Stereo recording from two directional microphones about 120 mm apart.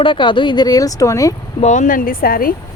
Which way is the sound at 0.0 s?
45° left (ahead or behind).